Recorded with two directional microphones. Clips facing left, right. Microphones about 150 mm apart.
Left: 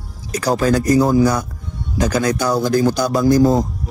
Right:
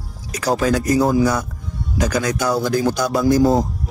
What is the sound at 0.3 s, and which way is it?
Speech, 40° left (ahead or behind).